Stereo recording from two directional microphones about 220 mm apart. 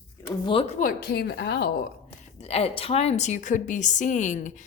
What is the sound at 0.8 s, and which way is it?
Speech, 40° left (ahead or behind).